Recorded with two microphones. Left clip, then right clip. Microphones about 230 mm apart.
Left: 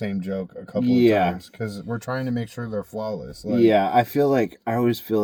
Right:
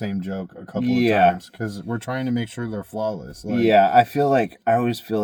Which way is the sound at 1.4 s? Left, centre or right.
Centre.